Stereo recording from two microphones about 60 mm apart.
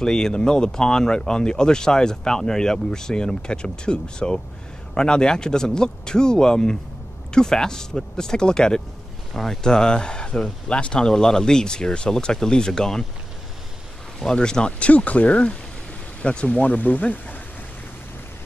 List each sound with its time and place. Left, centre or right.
0.0 s speech: centre
14.2 s speech: centre; by 17.4 s left